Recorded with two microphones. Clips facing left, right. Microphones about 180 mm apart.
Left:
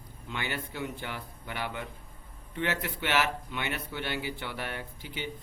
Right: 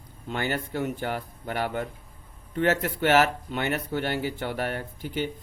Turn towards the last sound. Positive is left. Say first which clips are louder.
# right 8 dB
turn(degrees=-45)  # may be behind; listen again after turning